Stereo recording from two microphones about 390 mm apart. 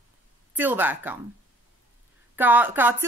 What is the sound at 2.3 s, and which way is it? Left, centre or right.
Speech, centre.